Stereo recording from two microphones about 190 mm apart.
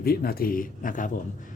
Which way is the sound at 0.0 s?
55° left (ahead or behind).